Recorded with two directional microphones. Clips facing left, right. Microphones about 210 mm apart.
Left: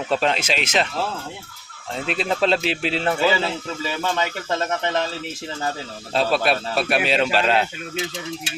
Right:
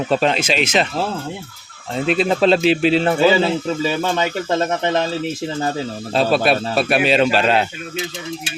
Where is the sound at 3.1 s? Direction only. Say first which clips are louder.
Right 6 dB; 25° right (ahead or behind).